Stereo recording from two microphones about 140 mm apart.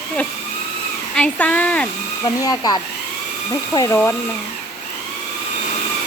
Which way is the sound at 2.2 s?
30° left (ahead or behind).